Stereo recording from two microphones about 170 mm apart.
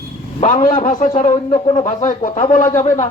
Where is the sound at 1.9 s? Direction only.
45° left (ahead or behind).